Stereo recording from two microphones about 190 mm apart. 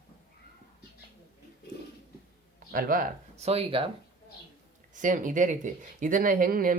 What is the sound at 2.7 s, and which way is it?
Speech, 45° right (ahead or behind).